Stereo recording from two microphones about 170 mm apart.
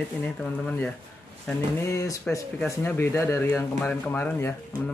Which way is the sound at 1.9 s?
20° left (ahead or behind).